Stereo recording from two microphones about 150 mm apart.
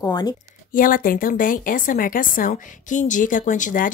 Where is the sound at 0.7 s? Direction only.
65° left (ahead or behind).